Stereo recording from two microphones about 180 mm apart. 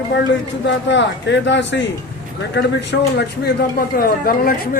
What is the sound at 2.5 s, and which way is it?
Speech, 70° left (ahead or behind).